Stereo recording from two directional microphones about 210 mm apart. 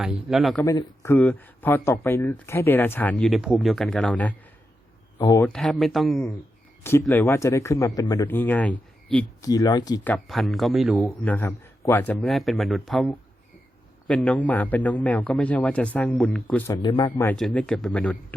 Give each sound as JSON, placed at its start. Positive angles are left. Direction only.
{"t": 0.0, "sound": "speech", "side_deg": 0}
{"t": 0.6, "sound": "speech", "side_deg": 15}
{"t": 5.5, "sound": "speech", "side_deg": 5}
{"t": 7.1, "sound": "speech", "side_deg": 10}
{"t": 10.1, "sound": "speech", "side_deg": 0}
{"t": 11.2, "sound": "speech", "side_deg": 10}
{"t": 16.8, "sound": "speech", "side_deg": 20}
{"t": 17.1, "sound": "speech", "side_deg": 10}